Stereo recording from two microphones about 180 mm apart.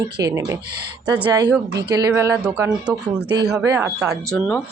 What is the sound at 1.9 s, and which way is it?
Speech, 20° right (ahead or behind).